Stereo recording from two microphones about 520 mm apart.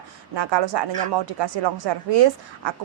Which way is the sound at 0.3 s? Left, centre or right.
Right.